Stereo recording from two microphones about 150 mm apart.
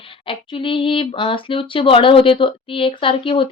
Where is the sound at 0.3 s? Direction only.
35° left (ahead or behind).